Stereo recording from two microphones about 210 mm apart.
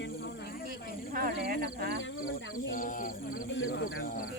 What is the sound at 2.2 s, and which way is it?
Wild animals, 40° left (ahead or behind).